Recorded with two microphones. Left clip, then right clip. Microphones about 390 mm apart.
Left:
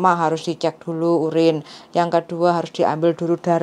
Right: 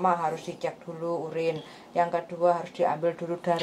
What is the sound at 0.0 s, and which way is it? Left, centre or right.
Speech, left.